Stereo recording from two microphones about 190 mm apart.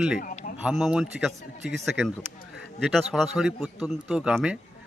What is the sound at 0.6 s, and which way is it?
Speech, 5° right (ahead or behind).